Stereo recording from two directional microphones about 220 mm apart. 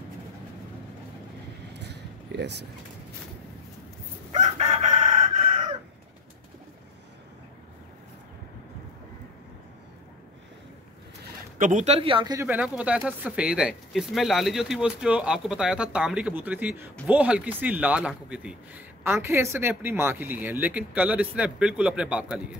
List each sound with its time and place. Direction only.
1.7 s a sound: 50° right (ahead or behind)
4.3 s chicken: 30° right (ahead or behind)
11.5 s speech: 35° right (ahead or behind); by 22.4 s 5° right (ahead or behind)